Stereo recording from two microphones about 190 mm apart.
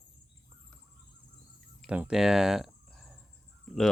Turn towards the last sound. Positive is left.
turn(degrees=0)  # may be behind; listen again after turning